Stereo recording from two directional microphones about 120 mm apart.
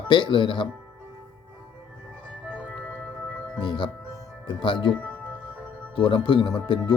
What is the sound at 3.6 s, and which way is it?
Speech, 40° left (ahead or behind).